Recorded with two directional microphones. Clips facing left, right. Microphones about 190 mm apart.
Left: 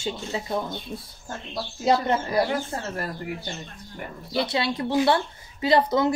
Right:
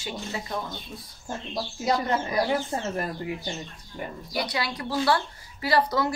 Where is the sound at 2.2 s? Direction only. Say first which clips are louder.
Left 1 dB; 20° right (ahead or behind).